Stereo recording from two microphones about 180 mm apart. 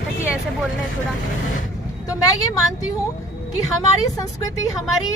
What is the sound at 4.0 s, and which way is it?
Speech, 20° left (ahead or behind).